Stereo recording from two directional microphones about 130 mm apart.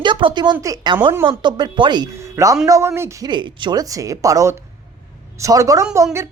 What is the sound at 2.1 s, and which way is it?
Speech, 25° right (ahead or behind).